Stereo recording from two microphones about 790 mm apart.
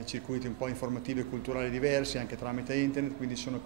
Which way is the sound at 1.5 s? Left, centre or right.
Right.